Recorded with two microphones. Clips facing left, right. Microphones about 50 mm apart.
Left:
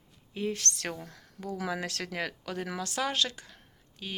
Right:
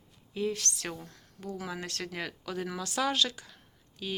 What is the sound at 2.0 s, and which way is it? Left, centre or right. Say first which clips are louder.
Speech: left 2 dB; left.